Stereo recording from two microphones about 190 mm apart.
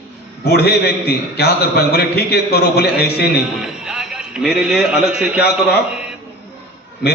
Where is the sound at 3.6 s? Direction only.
5° right (ahead or behind).